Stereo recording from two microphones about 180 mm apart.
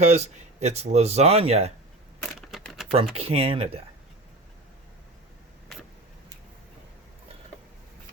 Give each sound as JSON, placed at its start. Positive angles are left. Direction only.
{"t": 0.0, "sound": "speech", "side_deg": -40}
{"t": 2.5, "sound": "typing", "side_deg": 0}
{"t": 3.2, "sound": "speech", "side_deg": -30}